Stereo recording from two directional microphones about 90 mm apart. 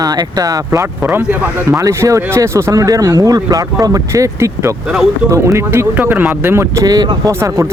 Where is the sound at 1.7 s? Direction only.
35° right (ahead or behind).